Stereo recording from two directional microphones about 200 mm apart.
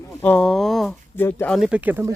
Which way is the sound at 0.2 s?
5° left (ahead or behind).